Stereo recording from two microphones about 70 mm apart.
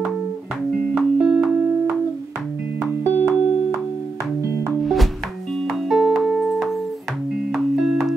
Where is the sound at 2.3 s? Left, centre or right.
Right.